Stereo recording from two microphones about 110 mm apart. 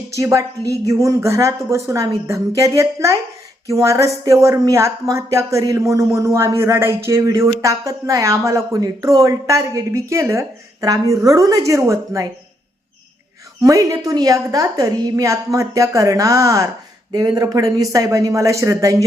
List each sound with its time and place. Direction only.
0.2 s speech: 30° right (ahead or behind)
13.6 s speech: 30° right (ahead or behind)